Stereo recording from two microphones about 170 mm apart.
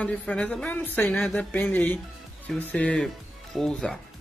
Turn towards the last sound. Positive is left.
turn(degrees=5)  # may be behind; listen again after turning